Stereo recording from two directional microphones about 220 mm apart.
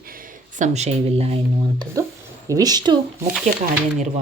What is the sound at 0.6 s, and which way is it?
Speech, 30° right (ahead or behind).